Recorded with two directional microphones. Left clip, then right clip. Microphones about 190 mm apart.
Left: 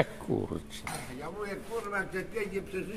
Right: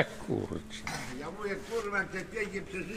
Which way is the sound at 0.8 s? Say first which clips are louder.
Right 1 dB; 45° left (ahead or behind).